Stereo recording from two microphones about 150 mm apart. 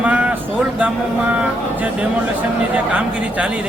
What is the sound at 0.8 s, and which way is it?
A man's voice, 10° right (ahead or behind).